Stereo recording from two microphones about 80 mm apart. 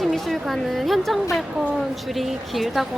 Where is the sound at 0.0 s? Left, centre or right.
Centre.